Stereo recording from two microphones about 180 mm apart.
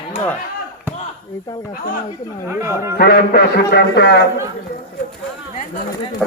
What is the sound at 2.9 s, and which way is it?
A man's voice, 55° left (ahead or behind).